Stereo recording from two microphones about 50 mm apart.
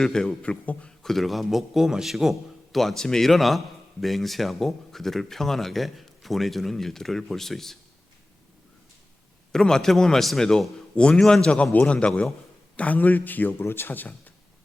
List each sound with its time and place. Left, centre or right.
0.0 s a man's voice: centre
0.6 s speech: left
0.9 s speech: centre
9.5 s a man's voice: centre; by 13.5 s left
13.5 s speech: left